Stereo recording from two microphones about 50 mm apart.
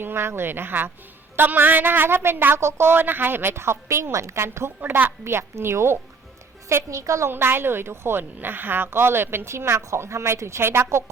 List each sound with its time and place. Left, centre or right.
0.0 s a woman's voice: right
2.6 s a woman's voice: right
4.8 s a woman's voice: right
6.7 s a woman's voice: right
7.3 s a woman's voice: right
10.6 s a woman's voice: right